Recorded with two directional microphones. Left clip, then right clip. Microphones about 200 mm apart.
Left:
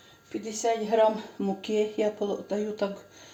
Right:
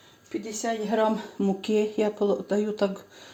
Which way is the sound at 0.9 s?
35° right (ahead or behind).